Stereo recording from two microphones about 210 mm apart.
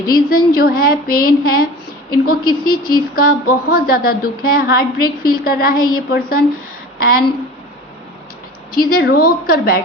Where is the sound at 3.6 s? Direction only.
45° left (ahead or behind).